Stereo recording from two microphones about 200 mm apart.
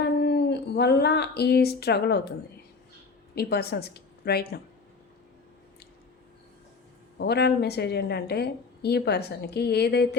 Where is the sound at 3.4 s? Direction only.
50° left (ahead or behind).